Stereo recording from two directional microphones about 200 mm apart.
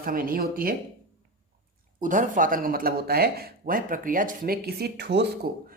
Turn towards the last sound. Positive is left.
turn(degrees=-55)  # may be behind; listen again after turning